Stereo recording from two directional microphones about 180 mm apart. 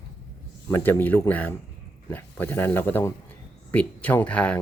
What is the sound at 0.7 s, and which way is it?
Speech, 15° left (ahead or behind).